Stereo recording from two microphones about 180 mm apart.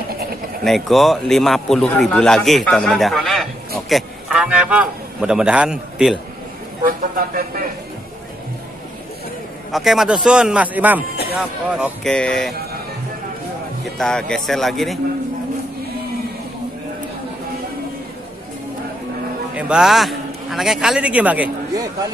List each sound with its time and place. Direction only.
0.7 s a man's voice: centre (ahead or behind)
6.9 s a sound: 55° right (ahead or behind)
9.7 s a man's voice: centre (ahead or behind)
13.9 s a man's voice: 5° left (ahead or behind)
19.5 s a man's voice: 5° right (ahead or behind)